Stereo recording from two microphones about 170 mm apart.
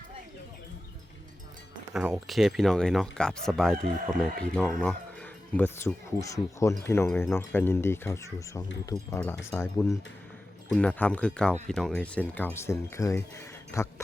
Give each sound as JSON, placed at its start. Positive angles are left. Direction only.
{"t": 1.9, "sound": "speech", "side_deg": -5}